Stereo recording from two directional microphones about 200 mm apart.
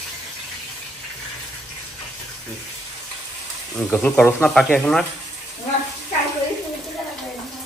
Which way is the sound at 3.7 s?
10° left (ahead or behind).